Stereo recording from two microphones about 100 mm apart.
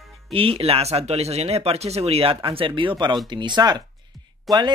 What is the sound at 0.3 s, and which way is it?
Speech, 75° right (ahead or behind).